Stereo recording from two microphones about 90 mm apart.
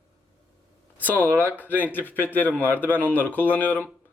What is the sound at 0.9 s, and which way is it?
Speech, 20° left (ahead or behind).